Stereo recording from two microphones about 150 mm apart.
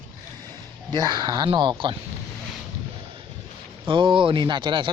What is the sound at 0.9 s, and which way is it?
Speech, 30° right (ahead or behind).